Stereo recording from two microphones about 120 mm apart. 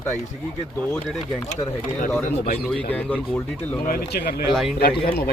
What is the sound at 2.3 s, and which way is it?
Speech, 10° left (ahead or behind).